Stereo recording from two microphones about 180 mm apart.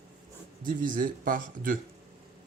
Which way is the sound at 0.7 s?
50° right (ahead or behind).